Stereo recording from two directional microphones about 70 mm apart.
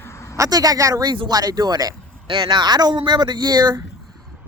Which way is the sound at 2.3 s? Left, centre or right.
Right.